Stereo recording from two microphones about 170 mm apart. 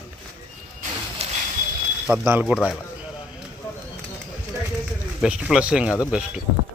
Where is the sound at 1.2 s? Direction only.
35° right (ahead or behind).